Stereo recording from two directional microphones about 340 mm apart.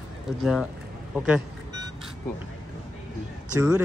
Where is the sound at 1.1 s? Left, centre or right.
Centre.